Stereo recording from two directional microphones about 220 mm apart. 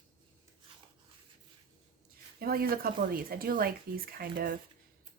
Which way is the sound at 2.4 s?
45° right (ahead or behind).